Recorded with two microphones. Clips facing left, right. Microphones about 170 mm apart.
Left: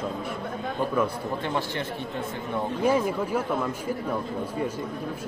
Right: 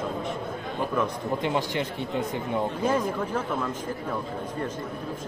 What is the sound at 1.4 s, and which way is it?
Speech, 15° right (ahead or behind).